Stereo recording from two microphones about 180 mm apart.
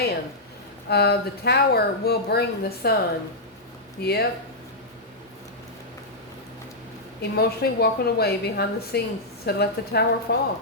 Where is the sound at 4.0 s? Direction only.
65° left (ahead or behind).